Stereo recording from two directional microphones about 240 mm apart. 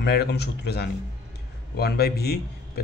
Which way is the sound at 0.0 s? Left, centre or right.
Left.